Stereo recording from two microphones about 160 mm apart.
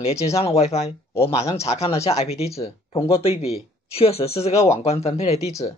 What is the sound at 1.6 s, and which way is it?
Speech, 40° left (ahead or behind).